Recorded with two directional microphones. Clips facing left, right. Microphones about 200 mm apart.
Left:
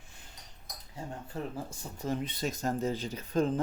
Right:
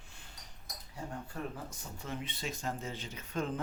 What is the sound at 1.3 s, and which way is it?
Speech, 25° left (ahead or behind).